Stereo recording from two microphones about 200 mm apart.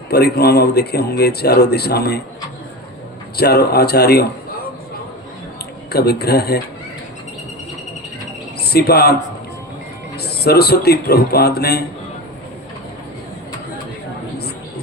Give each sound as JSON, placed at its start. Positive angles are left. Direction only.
{"t": 0.1, "sound": "speech", "side_deg": 55}
{"t": 3.3, "sound": "speech", "side_deg": 55}
{"t": 5.9, "sound": "speech", "side_deg": 55}
{"t": 8.6, "sound": "speech", "side_deg": 55}
{"t": 10.2, "sound": "speech", "side_deg": 55}